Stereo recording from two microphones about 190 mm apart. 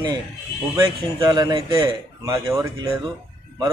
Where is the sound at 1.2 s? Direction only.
25° right (ahead or behind).